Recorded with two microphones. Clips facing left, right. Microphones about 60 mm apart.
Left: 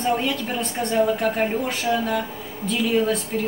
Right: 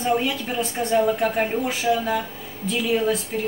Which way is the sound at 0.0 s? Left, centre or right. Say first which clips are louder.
Even; centre.